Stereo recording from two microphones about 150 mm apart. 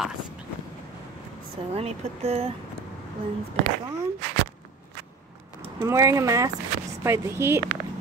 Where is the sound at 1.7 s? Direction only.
40° right (ahead or behind).